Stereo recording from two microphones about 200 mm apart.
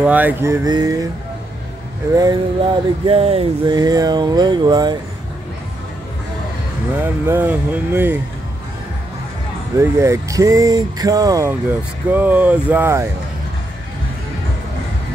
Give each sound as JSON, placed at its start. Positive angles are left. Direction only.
{"t": 0.0, "sound": "speech", "side_deg": -10}
{"t": 2.1, "sound": "speech", "side_deg": -20}
{"t": 3.1, "sound": "speech", "side_deg": -30}
{"t": 7.0, "sound": "speech", "side_deg": -10}
{"t": 9.8, "sound": "speech", "side_deg": -15}